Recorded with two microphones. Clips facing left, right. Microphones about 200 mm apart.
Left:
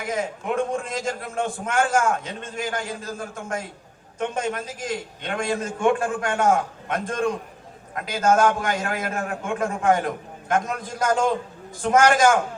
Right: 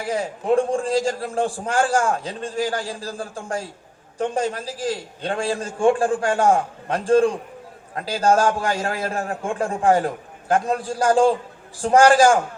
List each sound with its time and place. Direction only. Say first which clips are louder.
0.0 s a man's voice: right 2 dB; 30° right (ahead or behind)